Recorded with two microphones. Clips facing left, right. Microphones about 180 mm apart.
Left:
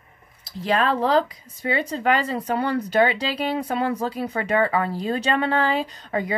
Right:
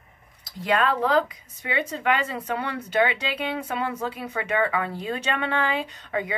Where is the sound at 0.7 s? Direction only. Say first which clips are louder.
Left 2 dB; 35° left (ahead or behind).